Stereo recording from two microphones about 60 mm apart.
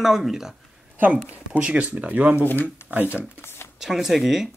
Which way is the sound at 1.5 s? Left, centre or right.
Right.